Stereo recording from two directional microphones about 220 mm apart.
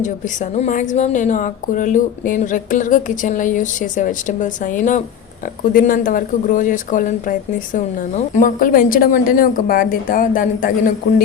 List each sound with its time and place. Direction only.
0.5 s speech: 35° left (ahead or behind)